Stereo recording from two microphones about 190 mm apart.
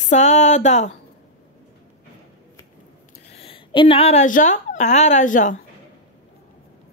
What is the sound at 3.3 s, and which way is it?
A woman's voice, 30° left (ahead or behind).